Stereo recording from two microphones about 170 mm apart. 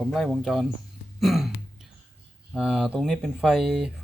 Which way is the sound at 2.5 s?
5° right (ahead or behind).